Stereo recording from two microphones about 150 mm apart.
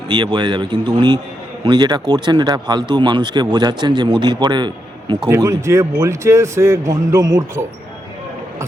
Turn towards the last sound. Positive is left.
turn(degrees=-20)  # may be behind; listen again after turning